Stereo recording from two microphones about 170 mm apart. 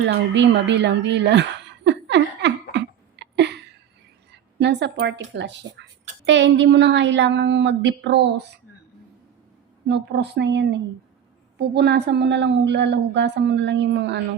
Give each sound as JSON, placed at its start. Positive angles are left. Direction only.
{"t": 0.0, "sound": "a sound", "side_deg": -90}
{"t": 4.3, "sound": "a woman's voice", "side_deg": -85}
{"t": 9.9, "sound": "a woman's voice", "side_deg": -85}